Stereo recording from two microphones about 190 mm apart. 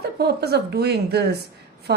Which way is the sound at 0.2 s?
60° right (ahead or behind).